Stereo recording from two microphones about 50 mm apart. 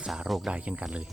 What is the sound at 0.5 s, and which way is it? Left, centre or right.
Speech, right.